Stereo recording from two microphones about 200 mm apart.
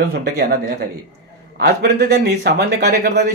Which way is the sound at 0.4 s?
55° right (ahead or behind).